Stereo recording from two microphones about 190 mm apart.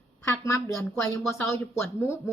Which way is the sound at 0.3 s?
15° left (ahead or behind).